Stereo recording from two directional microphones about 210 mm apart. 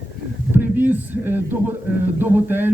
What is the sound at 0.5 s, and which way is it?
Speech, 10° right (ahead or behind).